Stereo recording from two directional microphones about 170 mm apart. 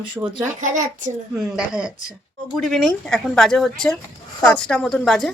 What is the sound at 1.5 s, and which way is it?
Speech, 5° right (ahead or behind).